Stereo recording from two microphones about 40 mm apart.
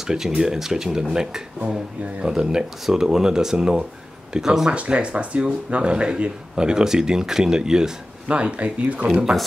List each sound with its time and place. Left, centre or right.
0.0 s speech: centre
4.7 s speech: right
8.3 s speech: right